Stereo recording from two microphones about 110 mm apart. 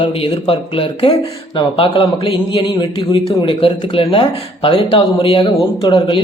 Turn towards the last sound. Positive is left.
turn(degrees=45)  # may be behind; listen again after turning